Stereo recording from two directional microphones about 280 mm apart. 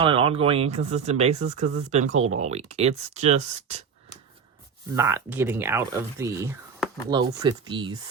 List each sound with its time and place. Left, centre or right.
0.0 s speech: centre
4.9 s speech: centre
7.1 s speech: centre